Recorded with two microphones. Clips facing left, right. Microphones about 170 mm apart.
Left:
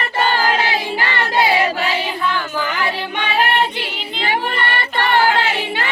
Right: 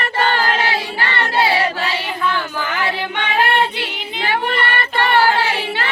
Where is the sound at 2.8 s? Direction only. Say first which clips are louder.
Even; 15° left (ahead or behind).